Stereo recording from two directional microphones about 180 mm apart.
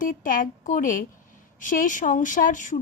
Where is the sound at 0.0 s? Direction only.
50° left (ahead or behind).